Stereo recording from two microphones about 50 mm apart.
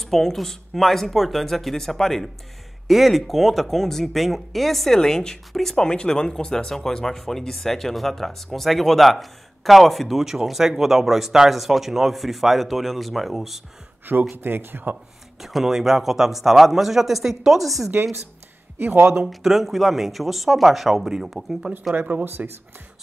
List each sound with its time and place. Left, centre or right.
0.0 s speech: centre
14.3 s speech: right
15.4 s speech: centre
19.2 s speech: centre
21.9 s speech: right